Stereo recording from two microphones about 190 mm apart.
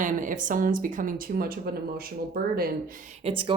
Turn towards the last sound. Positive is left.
turn(degrees=-25)  # may be behind; listen again after turning